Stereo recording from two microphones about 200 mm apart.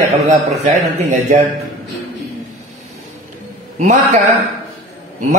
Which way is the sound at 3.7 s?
35° right (ahead or behind).